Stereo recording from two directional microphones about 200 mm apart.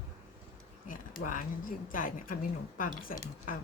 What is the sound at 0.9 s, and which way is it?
A woman's voice, 40° left (ahead or behind).